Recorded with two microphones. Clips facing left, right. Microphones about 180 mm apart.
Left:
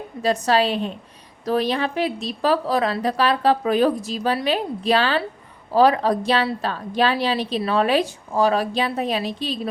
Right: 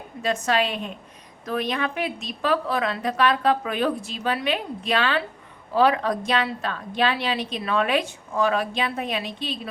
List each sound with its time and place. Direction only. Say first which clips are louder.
0.2 s a woman's voice: left 4 dB; 35° left (ahead or behind)